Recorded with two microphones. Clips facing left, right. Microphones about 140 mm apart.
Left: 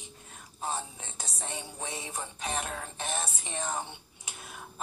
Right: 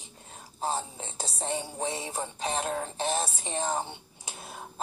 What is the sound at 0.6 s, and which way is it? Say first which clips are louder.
Music: right 4 dB; 35° right (ahead or behind).